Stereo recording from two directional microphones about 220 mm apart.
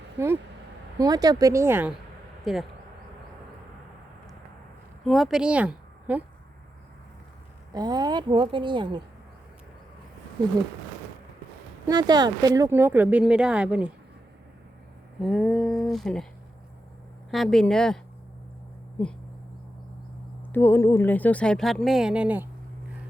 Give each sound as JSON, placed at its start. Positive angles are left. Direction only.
{"t": 0.2, "sound": "speech", "side_deg": -10}
{"t": 5.0, "sound": "a woman's voice", "side_deg": 0}
{"t": 7.7, "sound": "a woman's voice", "side_deg": -20}
{"t": 11.9, "sound": "speech", "side_deg": -20}
{"t": 15.2, "sound": "speech", "side_deg": 0}
{"t": 17.3, "sound": "speech", "side_deg": 0}
{"t": 20.5, "sound": "speech", "side_deg": 10}